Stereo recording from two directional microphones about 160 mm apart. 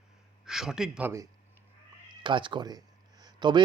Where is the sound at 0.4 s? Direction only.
5° right (ahead or behind).